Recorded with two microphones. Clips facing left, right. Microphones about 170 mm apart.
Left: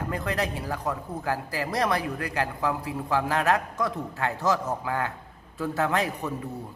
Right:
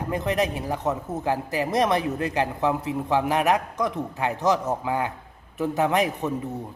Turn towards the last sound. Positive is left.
turn(degrees=-20)  # may be behind; listen again after turning